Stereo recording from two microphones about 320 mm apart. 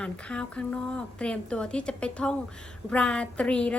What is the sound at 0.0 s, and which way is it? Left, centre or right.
A woman's voice, centre.